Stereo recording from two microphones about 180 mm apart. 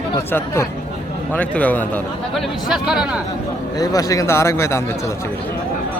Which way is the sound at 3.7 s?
20° left (ahead or behind).